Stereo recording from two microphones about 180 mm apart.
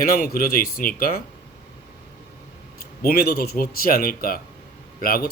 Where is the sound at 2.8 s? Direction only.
55° left (ahead or behind).